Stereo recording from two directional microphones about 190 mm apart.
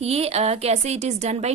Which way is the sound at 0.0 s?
35° right (ahead or behind).